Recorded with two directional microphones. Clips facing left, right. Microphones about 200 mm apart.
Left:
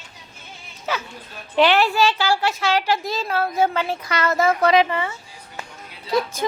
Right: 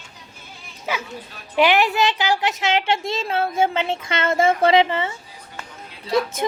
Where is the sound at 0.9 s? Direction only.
10° right (ahead or behind).